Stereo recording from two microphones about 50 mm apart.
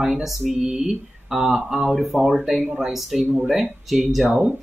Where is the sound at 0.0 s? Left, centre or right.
Centre.